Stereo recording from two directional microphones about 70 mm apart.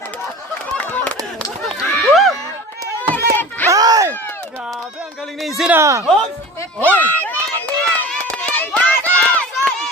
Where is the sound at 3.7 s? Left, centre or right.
Right.